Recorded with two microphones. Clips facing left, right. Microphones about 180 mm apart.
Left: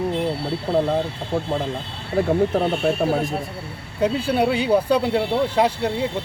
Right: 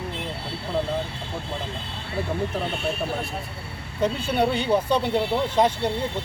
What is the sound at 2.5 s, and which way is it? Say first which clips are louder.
Speech: left 7 dB; 55° left (ahead or behind).